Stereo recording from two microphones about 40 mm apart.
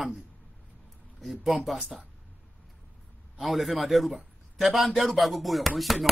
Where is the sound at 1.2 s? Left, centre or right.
Centre.